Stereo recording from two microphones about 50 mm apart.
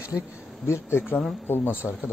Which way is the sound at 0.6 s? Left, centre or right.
Left.